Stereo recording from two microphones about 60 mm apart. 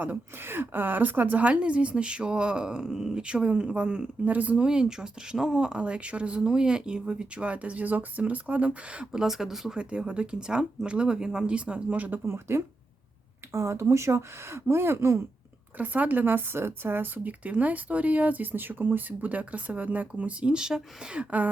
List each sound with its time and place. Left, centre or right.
0.0 s a woman's voice: right; by 9.2 s centre
9.2 s speech: centre
9.7 s speech: centre
12.2 s speech: right
15.8 s speech: right
17.4 s a woman's voice: right